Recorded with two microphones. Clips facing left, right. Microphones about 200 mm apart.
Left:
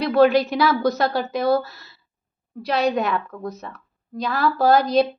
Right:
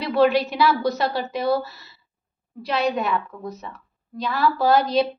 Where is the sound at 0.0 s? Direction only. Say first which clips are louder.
Left 3 dB; 45° left (ahead or behind).